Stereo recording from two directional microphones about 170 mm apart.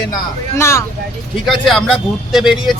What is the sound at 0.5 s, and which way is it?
Speech, 15° left (ahead or behind).